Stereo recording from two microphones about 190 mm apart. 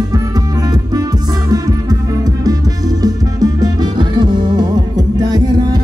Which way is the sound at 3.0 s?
20° right (ahead or behind).